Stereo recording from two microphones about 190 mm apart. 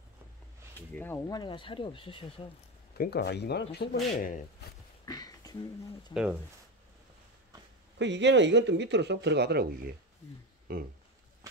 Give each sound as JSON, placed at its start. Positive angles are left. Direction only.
{"t": 0.7, "sound": "speech", "side_deg": 10}
{"t": 1.4, "sound": "speech", "side_deg": 25}
{"t": 3.0, "sound": "speech", "side_deg": 60}
{"t": 5.0, "sound": "a sound", "side_deg": 20}
{"t": 6.1, "sound": "speech", "side_deg": 25}
{"t": 8.0, "sound": "speech", "side_deg": -70}